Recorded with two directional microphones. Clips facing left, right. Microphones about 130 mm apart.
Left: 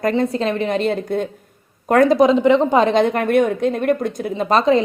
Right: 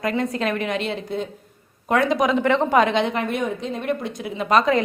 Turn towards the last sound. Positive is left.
turn(degrees=30)  # may be behind; listen again after turning